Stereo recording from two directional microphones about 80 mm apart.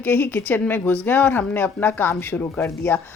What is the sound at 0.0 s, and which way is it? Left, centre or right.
A woman's voice, left.